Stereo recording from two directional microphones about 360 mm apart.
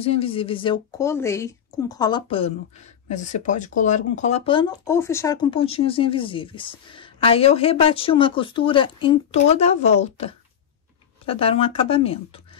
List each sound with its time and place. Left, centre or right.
0.0 s speech: centre